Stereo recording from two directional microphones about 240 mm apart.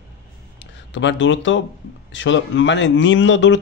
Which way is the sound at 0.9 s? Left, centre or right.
Left.